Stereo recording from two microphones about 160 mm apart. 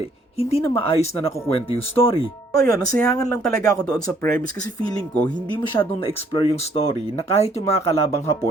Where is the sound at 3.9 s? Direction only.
20° left (ahead or behind).